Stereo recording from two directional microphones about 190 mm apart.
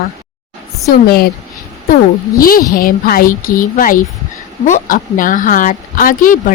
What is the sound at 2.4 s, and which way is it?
A woman's voice, 50° left (ahead or behind).